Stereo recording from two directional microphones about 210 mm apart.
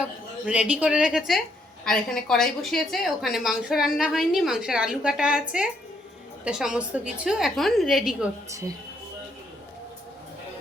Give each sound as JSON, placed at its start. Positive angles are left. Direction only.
{"t": 0.4, "sound": "a woman's voice", "side_deg": -5}